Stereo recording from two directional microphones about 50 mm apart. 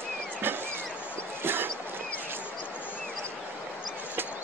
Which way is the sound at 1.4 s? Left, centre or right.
Right.